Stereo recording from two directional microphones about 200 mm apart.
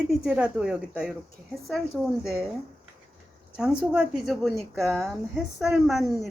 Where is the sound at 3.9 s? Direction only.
5° right (ahead or behind).